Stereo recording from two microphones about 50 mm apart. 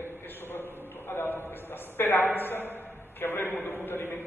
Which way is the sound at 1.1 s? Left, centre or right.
Left.